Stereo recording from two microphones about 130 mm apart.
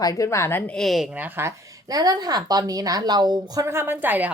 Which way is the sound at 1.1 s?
15° right (ahead or behind).